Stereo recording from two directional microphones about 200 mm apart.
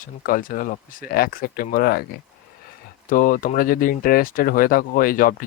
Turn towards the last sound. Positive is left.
turn(degrees=45)  # may be behind; listen again after turning